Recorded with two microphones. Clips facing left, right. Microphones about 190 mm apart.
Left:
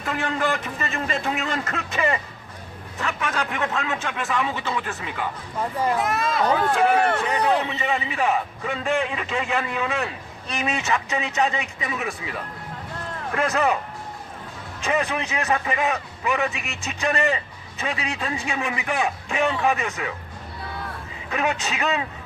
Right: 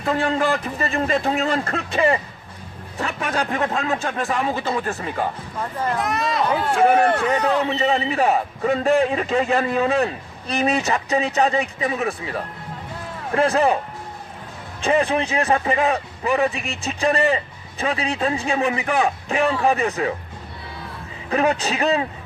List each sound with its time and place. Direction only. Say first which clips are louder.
0.0 s a man's voice: right 5 dB; 35° right (ahead or behind)
5.7 s speech: even; 10° left (ahead or behind)
6.7 s a man's voice: right 3 dB; 35° right (ahead or behind)
14.8 s a man's voice: right 5 dB; 30° right (ahead or behind)
21.2 s a man's voice: right 6 dB; 35° right (ahead or behind)